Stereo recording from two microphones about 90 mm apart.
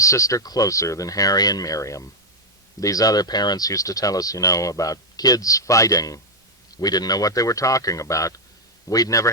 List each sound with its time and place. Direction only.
0.0 s speech: 35° left (ahead or behind)